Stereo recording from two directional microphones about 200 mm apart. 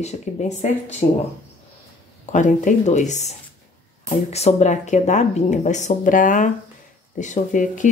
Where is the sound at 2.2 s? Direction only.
40° left (ahead or behind).